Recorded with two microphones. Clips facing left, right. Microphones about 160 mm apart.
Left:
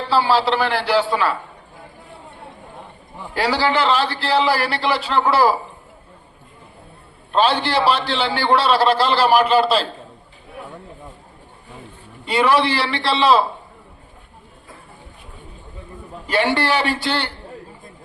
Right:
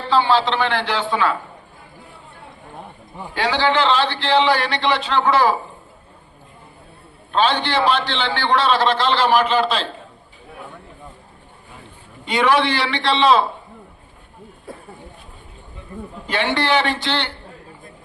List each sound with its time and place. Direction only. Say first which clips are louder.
0.1 s a man's voice: even; 10° left (ahead or behind)
3.4 s a man's voice: even; 10° left (ahead or behind)
7.3 s a man's voice: left 1 dB; 5° left (ahead or behind)
12.2 s a man's voice: left 1 dB; 5° left (ahead or behind)
16.2 s a man's voice: left 2 dB; 10° left (ahead or behind)